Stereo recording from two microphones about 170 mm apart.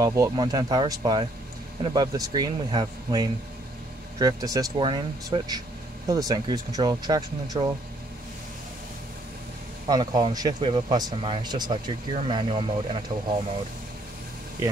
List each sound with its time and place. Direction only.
0.0 s speech: 20° right (ahead or behind)
9.8 s speech: 25° right (ahead or behind)